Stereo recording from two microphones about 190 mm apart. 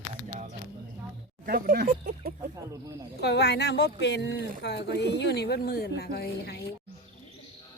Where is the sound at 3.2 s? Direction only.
60° left (ahead or behind).